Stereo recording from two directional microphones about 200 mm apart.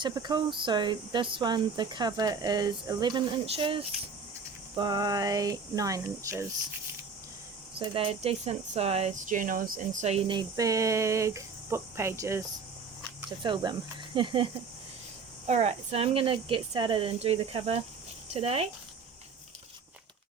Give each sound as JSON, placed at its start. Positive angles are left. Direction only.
{"t": 0.0, "sound": "speech", "side_deg": -20}
{"t": 7.8, "sound": "speech", "side_deg": -30}
{"t": 13.4, "sound": "speech", "side_deg": -20}
{"t": 15.4, "sound": "speech", "side_deg": -35}